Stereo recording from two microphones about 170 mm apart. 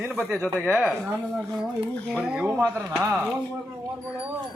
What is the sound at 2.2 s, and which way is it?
Speech, 5° right (ahead or behind).